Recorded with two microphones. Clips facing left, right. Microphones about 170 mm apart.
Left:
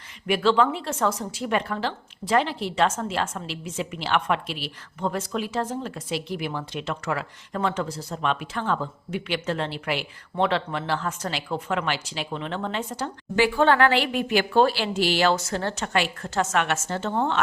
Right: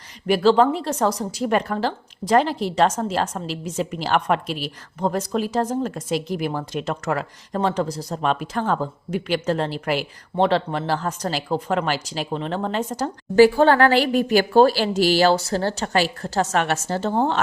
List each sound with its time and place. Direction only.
0.3 s a woman's voice: 35° right (ahead or behind)